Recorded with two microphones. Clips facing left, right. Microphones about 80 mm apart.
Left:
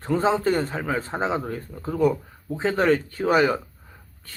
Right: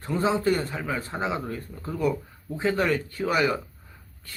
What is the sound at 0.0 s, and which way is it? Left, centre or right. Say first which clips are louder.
Speech: left 3 dB; left.